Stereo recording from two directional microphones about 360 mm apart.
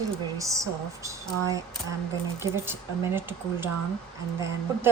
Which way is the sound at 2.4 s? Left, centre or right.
Centre.